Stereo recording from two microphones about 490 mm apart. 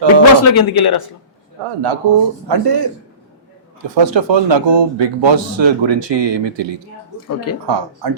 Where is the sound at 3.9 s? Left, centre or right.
Right.